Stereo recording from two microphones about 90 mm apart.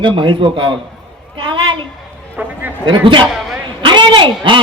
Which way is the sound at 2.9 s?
65° right (ahead or behind).